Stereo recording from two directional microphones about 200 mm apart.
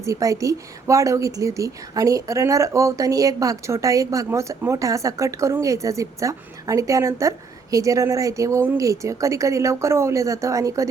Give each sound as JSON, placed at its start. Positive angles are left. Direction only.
{"t": 0.0, "sound": "speech", "side_deg": -15}